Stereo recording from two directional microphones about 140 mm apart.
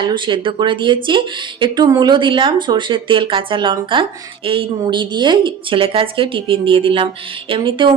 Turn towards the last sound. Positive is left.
turn(degrees=-35)  # may be behind; listen again after turning